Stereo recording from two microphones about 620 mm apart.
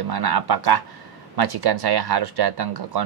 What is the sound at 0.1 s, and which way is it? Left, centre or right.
Speech, right.